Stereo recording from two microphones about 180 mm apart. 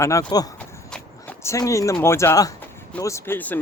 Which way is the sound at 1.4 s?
15° left (ahead or behind).